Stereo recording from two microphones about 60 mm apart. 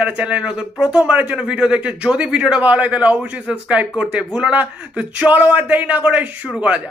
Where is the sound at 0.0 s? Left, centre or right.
Centre.